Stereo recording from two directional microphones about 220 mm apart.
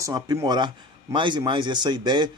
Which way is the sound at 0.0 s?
15° right (ahead or behind).